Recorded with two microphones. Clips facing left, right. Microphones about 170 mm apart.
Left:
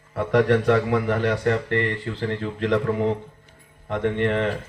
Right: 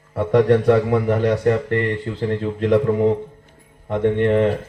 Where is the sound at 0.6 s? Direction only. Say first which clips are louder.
Right 4 dB; 10° right (ahead or behind).